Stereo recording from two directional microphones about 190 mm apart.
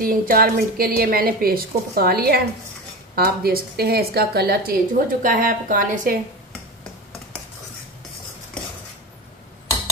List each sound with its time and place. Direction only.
0.0 s a woman's voice: 50° right (ahead or behind)